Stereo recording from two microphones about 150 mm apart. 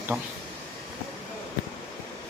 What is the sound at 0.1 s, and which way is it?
Speech, 5° right (ahead or behind).